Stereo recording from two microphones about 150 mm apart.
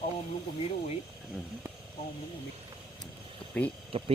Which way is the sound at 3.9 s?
40° right (ahead or behind).